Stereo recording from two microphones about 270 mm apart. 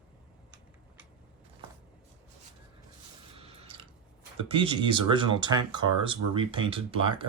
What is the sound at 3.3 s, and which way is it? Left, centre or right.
Drip, right.